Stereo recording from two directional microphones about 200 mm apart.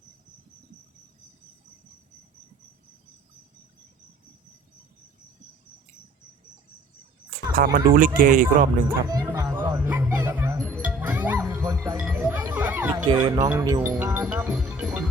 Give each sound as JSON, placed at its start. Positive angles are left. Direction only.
{"t": 7.5, "sound": "speech", "side_deg": -45}
{"t": 8.9, "sound": "music", "side_deg": -15}
{"t": 12.1, "sound": "a sound", "side_deg": -10}
{"t": 13.1, "sound": "speech", "side_deg": -25}
{"t": 14.3, "sound": "music", "side_deg": -5}